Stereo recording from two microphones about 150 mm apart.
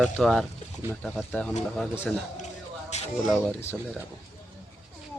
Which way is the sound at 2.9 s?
50° left (ahead or behind).